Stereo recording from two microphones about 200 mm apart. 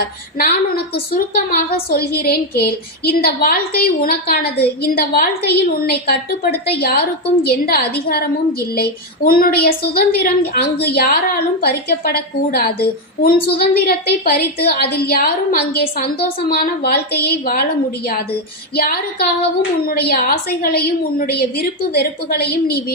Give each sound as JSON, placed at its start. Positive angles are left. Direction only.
{"t": 0.0, "sound": "a woman's voice", "side_deg": 50}